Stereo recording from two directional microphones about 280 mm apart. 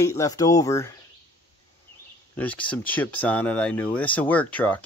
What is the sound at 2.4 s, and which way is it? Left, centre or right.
Speech, centre.